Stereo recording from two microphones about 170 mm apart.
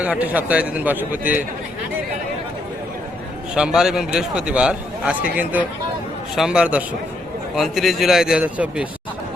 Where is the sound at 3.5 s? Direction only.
5° right (ahead or behind).